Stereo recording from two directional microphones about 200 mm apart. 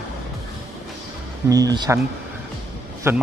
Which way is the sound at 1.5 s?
20° right (ahead or behind).